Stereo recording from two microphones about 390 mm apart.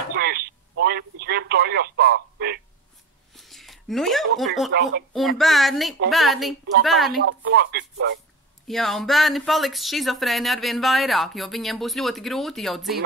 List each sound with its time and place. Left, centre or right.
0.1 s telephone: right
3.3 s a sound: centre
4.7 s speech: right
5.4 s speech: centre
7.2 s speech: right
8.6 s speech: centre